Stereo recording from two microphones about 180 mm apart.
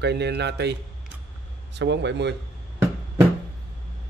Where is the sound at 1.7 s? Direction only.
75° right (ahead or behind).